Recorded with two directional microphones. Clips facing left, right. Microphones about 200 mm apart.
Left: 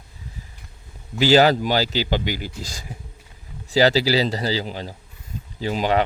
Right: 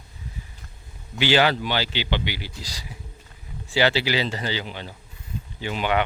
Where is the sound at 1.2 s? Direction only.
40° left (ahead or behind).